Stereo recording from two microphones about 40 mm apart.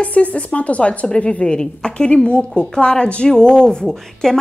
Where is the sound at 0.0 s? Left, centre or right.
Left.